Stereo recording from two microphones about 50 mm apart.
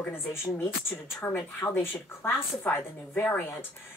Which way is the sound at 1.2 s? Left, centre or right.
Left.